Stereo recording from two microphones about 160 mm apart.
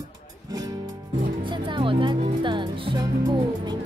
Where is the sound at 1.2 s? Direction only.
30° right (ahead or behind).